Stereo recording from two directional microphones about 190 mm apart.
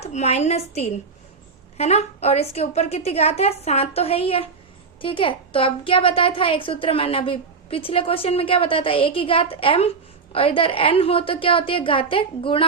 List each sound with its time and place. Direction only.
0.0 s a woman's voice: 35° left (ahead or behind)